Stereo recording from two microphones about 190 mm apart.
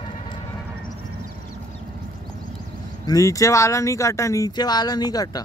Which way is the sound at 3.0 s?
20° left (ahead or behind).